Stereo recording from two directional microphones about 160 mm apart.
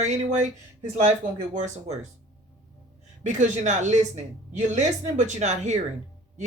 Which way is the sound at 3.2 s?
50° right (ahead or behind).